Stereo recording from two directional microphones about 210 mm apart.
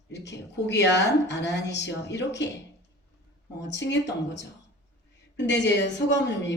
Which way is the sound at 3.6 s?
60° left (ahead or behind).